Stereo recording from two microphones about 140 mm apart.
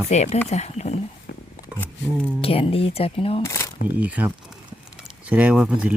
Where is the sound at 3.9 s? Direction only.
10° right (ahead or behind).